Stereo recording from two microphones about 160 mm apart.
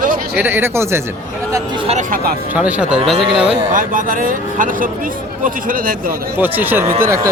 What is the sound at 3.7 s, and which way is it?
A man's voice, 55° right (ahead or behind).